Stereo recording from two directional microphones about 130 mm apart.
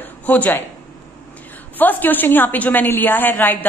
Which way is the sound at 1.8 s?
15° left (ahead or behind).